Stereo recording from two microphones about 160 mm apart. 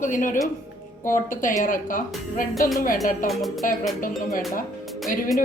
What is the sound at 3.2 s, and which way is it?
Speech, centre (ahead or behind).